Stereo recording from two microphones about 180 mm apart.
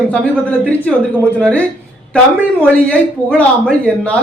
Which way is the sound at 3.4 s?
5° left (ahead or behind).